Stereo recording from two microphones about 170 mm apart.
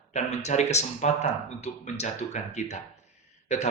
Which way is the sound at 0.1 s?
40° left (ahead or behind).